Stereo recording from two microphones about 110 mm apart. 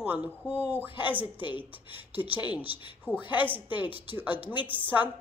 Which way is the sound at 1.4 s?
50° left (ahead or behind).